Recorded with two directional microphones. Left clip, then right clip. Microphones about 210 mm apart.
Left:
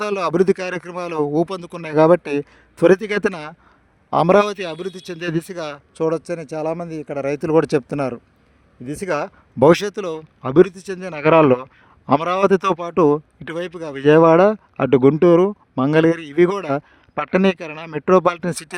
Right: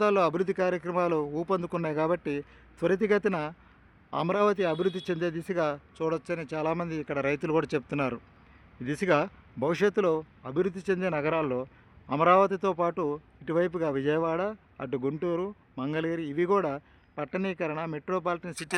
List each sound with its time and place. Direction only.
0.0 s speech: 45° left (ahead or behind)
4.7 s speech: 5° right (ahead or behind)
5.2 s speech: 50° left (ahead or behind)
8.8 s a man's voice: 25° left (ahead or behind); by 18.5 s 55° left (ahead or behind)